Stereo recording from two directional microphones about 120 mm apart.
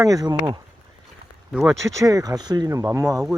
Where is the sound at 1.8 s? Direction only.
25° right (ahead or behind).